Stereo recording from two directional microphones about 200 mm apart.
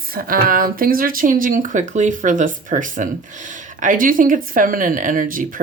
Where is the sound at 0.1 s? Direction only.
45° right (ahead or behind).